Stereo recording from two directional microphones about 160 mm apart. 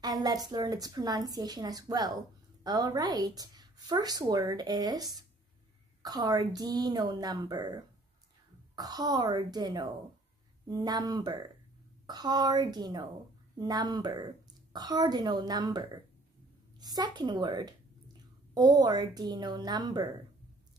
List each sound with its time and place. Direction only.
0.0 s a woman's voice: 25° right (ahead or behind)